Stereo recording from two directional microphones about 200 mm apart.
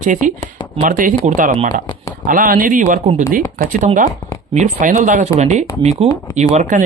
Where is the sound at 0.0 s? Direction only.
40° right (ahead or behind).